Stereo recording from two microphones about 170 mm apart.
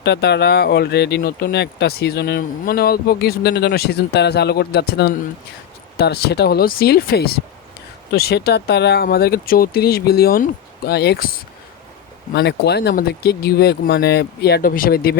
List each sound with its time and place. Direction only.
0.0 s speech: 90° left; by 11.3 s 75° left (ahead or behind)
12.3 s speech: 75° left (ahead or behind)